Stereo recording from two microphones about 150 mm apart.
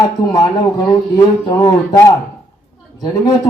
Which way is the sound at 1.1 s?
25° left (ahead or behind).